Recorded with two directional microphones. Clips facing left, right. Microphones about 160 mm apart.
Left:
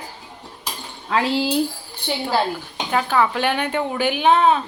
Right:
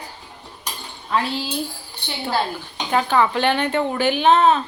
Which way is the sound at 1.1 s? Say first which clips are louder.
Left 3 dB; 90° left.